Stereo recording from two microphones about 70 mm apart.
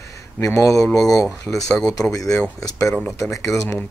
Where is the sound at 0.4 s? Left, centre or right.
Left.